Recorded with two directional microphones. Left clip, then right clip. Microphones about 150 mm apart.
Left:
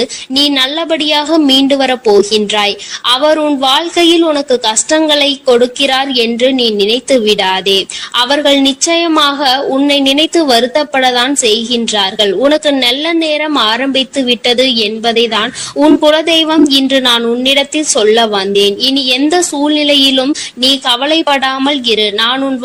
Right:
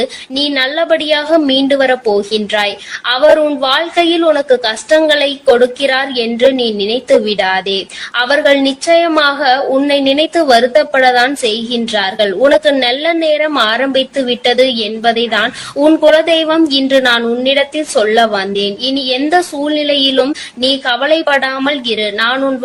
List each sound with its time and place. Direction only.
0.0 s a woman's voice: 40° left (ahead or behind)